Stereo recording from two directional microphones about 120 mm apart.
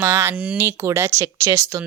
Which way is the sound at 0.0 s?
20° right (ahead or behind).